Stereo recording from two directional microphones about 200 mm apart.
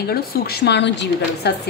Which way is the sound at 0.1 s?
50° left (ahead or behind).